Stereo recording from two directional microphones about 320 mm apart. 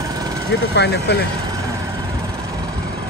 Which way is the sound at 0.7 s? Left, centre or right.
Left.